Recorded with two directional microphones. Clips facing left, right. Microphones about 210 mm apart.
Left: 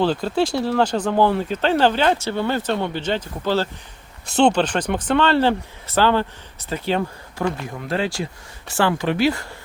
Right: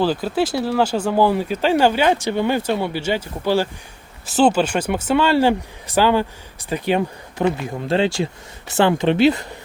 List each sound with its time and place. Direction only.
0.0 s speech: 5° right (ahead or behind); by 9.6 s 20° right (ahead or behind)